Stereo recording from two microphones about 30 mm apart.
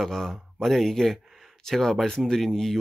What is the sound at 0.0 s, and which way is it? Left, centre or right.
Speech, centre.